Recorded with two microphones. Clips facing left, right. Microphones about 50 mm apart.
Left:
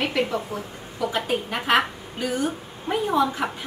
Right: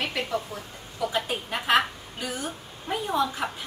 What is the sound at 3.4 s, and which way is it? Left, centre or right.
Speech, centre.